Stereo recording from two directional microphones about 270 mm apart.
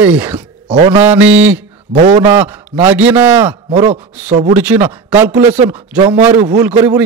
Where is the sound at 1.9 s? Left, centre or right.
Right.